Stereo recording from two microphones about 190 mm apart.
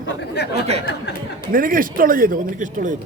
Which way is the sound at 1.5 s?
45° right (ahead or behind).